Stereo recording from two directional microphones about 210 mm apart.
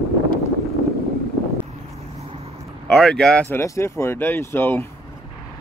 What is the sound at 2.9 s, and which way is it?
Speech, centre (ahead or behind).